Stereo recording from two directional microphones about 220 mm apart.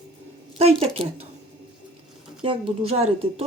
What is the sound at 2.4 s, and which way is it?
Speech, 25° right (ahead or behind).